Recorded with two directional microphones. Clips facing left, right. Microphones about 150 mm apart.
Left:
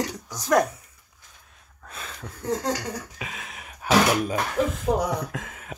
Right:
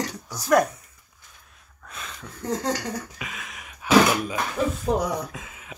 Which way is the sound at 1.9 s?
30° left (ahead or behind).